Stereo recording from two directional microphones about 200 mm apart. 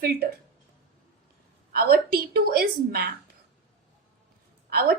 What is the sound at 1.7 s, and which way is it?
A woman's voice, 50° right (ahead or behind).